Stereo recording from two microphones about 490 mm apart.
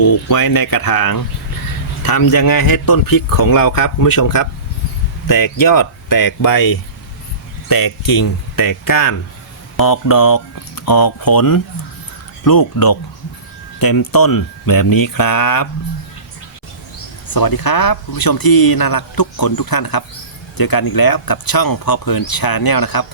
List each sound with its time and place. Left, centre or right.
0.0 s speech: left
17.3 s speech: left